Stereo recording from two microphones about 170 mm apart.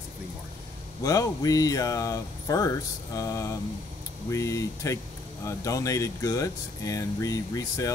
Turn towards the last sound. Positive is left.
turn(degrees=20)  # may be behind; listen again after turning